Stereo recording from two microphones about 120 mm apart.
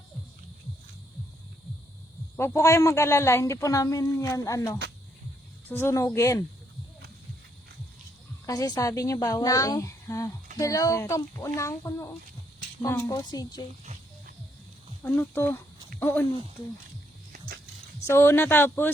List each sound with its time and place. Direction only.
2.3 s speech: 20° left (ahead or behind)
8.4 s a woman's voice: 30° left (ahead or behind)
15.0 s speech: 15° left (ahead or behind)
18.0 s speech: 20° left (ahead or behind)